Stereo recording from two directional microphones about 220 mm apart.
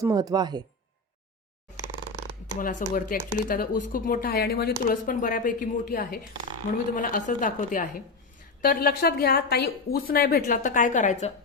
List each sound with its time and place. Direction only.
0.0 s speech: 15° right (ahead or behind)
1.7 s a sound: 20° right (ahead or behind)
2.6 s a woman's voice: 35° left (ahead or behind)